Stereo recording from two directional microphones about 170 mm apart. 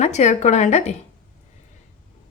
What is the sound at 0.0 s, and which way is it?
Speech, 40° left (ahead or behind).